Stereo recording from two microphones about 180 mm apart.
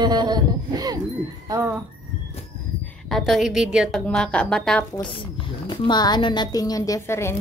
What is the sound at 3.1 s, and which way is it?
A woman's voice, centre (ahead or behind).